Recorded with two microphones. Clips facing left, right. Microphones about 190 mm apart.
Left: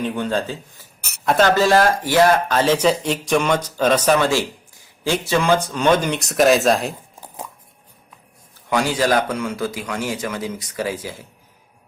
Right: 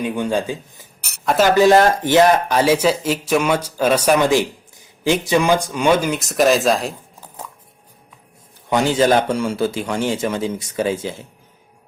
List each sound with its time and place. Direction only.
0.0 s speech: 10° right (ahead or behind)
1.2 s speech: centre (ahead or behind)
1.5 s speech: 15° right (ahead or behind); by 6.9 s centre (ahead or behind)
8.7 s a man's voice: 25° right (ahead or behind)